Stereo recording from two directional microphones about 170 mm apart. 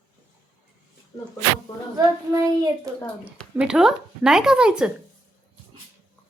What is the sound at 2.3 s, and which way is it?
Speech, 20° right (ahead or behind).